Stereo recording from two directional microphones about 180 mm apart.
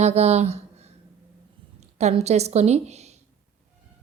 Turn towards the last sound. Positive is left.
turn(degrees=-35)  # may be behind; listen again after turning